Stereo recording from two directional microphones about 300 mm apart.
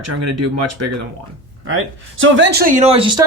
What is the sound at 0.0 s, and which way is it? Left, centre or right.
Speech, right.